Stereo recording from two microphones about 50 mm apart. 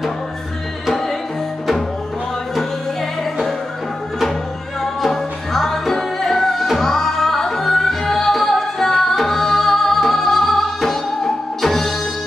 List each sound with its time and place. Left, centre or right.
5.0 s music: centre